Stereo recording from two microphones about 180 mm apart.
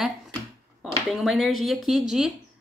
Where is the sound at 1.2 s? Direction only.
Centre (ahead or behind).